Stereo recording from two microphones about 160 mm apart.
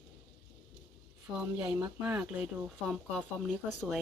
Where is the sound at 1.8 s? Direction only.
5° right (ahead or behind).